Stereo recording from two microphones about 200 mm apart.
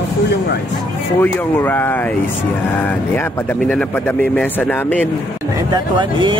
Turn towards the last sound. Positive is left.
turn(degrees=-25)  # may be behind; listen again after turning